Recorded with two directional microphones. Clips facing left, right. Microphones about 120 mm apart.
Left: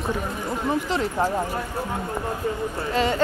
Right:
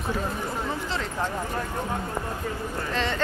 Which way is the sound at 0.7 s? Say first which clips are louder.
Left 6 dB; 15° left (ahead or behind).